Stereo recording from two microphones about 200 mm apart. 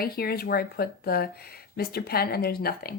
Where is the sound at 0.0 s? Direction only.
50° left (ahead or behind).